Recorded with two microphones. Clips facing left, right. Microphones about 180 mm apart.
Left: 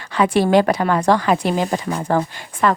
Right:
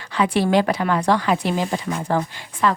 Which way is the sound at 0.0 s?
50° left (ahead or behind).